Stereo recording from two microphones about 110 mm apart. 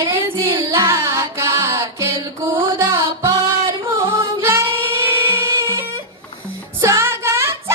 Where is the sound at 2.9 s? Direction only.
50° right (ahead or behind).